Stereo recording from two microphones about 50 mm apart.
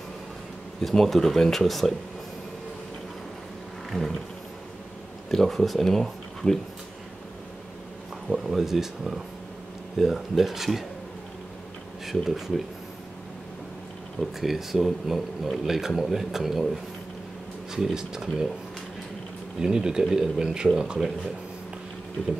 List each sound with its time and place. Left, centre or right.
0.7 s speech: centre
3.9 s roaring cats: centre
5.3 s speech: centre
8.3 s speech: centre
12.1 s speech: centre
14.4 s speech: centre
17.7 s speech: centre
19.6 s speech: centre